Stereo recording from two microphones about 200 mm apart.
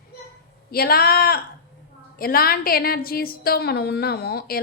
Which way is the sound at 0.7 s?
50° left (ahead or behind).